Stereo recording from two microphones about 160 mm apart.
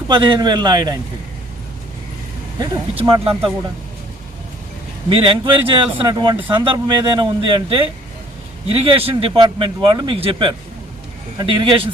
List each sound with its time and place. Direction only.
0.1 s a man's voice: 30° right (ahead or behind)
2.9 s a man's voice: 35° right (ahead or behind)
5.0 s a man's voice: 35° right (ahead or behind)